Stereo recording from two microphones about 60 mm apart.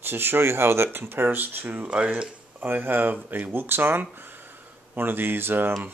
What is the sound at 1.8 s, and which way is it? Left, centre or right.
Speech, right.